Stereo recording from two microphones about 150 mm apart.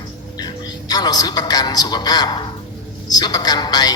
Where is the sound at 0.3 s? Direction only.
25° left (ahead or behind).